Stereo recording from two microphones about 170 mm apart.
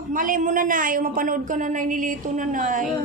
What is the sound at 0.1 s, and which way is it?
A woman's voice, 50° right (ahead or behind).